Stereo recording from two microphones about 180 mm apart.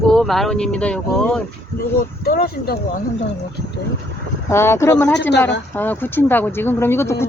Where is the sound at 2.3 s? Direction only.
60° left (ahead or behind).